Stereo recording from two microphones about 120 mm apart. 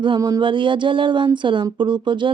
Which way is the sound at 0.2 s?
35° right (ahead or behind).